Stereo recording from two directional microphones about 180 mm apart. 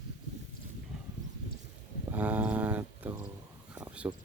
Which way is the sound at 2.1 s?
10° right (ahead or behind).